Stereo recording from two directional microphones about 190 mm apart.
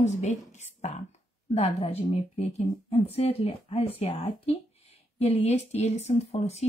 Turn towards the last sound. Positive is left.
turn(degrees=35)  # may be behind; listen again after turning